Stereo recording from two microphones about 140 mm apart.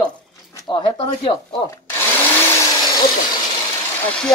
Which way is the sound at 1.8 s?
15° left (ahead or behind).